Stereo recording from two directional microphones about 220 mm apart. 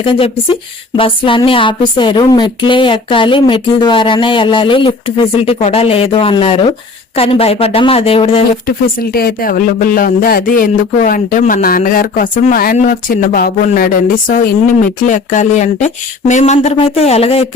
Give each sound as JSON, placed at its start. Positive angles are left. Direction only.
{"t": 0.0, "sound": "speech", "side_deg": 25}
{"t": 8.6, "sound": "speech", "side_deg": 45}